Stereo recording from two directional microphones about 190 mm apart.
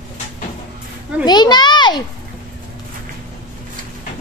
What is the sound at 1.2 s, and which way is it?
Speech, 20° left (ahead or behind).